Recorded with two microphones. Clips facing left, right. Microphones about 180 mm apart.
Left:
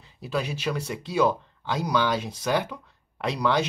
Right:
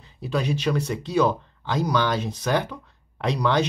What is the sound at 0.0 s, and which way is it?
Speech, 5° left (ahead or behind).